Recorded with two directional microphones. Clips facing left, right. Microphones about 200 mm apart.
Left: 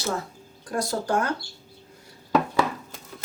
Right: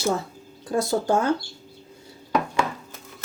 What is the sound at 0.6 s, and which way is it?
Speech, 25° right (ahead or behind).